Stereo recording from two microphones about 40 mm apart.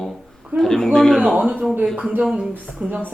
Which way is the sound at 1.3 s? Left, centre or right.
Right.